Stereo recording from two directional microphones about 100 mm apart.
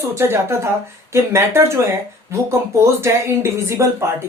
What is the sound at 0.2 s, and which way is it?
Speech, 25° right (ahead or behind).